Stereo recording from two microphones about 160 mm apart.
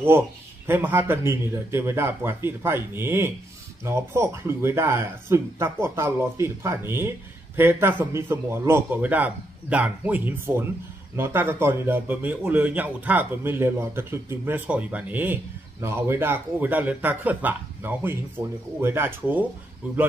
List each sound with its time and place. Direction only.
0.7 s speech: 15° right (ahead or behind)